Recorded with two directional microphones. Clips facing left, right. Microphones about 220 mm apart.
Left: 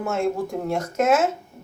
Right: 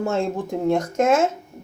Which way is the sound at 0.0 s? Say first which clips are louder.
Right 2 dB; 30° right (ahead or behind).